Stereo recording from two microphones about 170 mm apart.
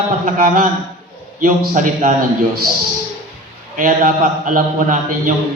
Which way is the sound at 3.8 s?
50° right (ahead or behind).